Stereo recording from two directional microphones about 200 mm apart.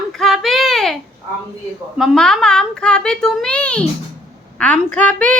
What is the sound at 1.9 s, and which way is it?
A child's voice, centre (ahead or behind).